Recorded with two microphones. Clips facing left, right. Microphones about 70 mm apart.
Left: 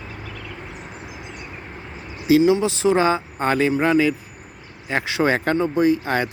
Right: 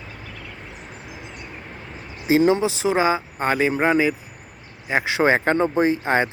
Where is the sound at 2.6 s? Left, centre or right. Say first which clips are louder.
Left 2 dB; centre.